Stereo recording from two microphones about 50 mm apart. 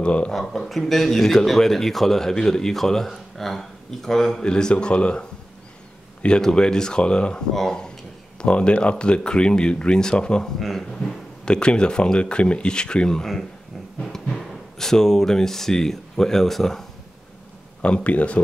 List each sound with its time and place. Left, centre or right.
0.0 s a man's voice: left
0.3 s speech: centre; by 5.2 s left
6.4 s speech: centre
11.4 s speech: centre
17.8 s speech: left